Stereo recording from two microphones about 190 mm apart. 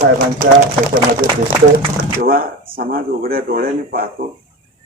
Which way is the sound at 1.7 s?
50° right (ahead or behind).